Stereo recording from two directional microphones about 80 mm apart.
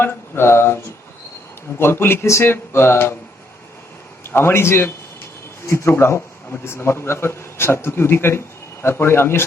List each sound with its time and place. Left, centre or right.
0.0 s speech: left
4.2 s a man's voice: left